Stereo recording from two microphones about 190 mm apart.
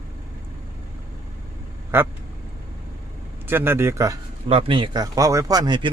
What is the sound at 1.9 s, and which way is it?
Speech, 10° right (ahead or behind).